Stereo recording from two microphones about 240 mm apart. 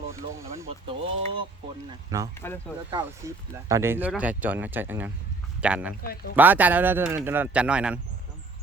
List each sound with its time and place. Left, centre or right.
0.1 s speech: centre
6.0 s speech: left
6.3 s speech: centre